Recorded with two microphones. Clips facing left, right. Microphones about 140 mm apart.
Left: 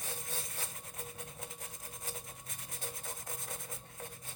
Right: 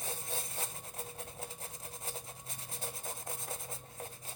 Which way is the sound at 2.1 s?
30° right (ahead or behind).